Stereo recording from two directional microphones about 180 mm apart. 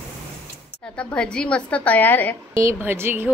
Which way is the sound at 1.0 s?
5° left (ahead or behind).